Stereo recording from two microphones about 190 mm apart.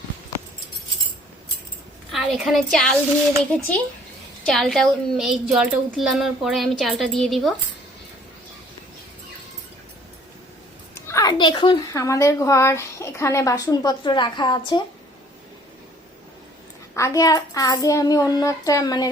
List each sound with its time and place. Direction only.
2.1 s a woman's voice: centre (ahead or behind)
4.4 s a woman's voice: centre (ahead or behind)
10.9 s a woman's voice: 15° left (ahead or behind)
16.9 s child singing: 15° left (ahead or behind)